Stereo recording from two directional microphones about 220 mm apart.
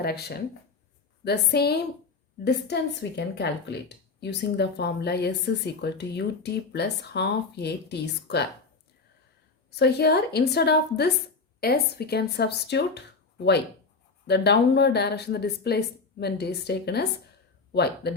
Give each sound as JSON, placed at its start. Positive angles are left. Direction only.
{"t": 0.0, "sound": "speech", "side_deg": 45}
{"t": 9.6, "sound": "speech", "side_deg": 50}
{"t": 14.3, "sound": "speech", "side_deg": 50}